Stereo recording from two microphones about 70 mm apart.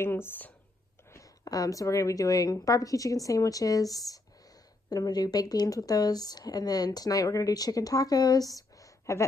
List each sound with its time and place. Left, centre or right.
0.0 s speech: left
1.1 s speech: left